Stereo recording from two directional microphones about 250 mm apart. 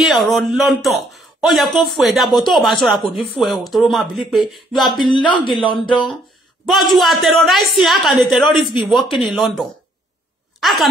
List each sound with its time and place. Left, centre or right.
0.0 s a man's voice: centre
5.0 s speech: centre
6.7 s a man's voice: centre